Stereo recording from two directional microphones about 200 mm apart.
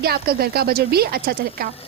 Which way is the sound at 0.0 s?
50° right (ahead or behind).